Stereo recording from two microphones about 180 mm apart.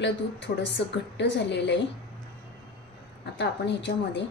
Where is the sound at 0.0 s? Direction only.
80° left.